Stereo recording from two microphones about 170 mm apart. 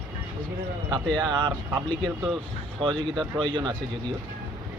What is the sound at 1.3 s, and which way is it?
Speech, 25° right (ahead or behind).